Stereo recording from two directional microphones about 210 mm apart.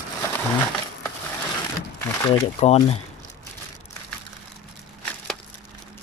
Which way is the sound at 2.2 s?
30° left (ahead or behind).